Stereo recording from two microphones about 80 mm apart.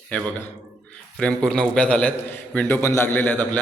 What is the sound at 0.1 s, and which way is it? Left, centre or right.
A man's voice, centre.